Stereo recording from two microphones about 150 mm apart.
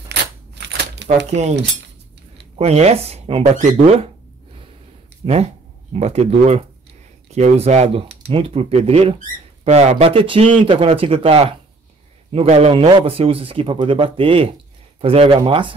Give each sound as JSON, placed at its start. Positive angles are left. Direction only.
{"t": 1.0, "sound": "speech", "side_deg": -50}
{"t": 5.2, "sound": "speech", "side_deg": -45}